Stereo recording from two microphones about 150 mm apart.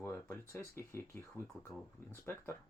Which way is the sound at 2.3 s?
10° left (ahead or behind).